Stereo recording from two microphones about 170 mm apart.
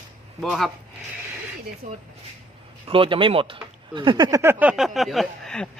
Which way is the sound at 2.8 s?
30° right (ahead or behind).